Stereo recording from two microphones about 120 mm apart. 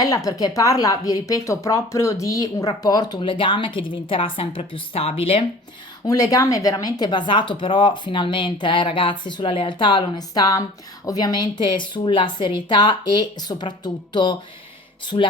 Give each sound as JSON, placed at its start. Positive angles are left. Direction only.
{"t": 0.0, "sound": "a woman's voice", "side_deg": 30}
{"t": 6.3, "sound": "a woman's voice", "side_deg": 30}